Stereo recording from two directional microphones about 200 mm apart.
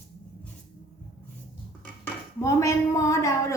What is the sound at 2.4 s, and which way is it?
Speech, 15° left (ahead or behind).